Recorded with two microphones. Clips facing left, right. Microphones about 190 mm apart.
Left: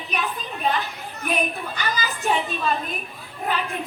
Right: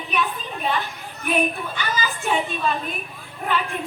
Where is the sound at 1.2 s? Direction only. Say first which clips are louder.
Right 3 dB; 40° left (ahead or behind).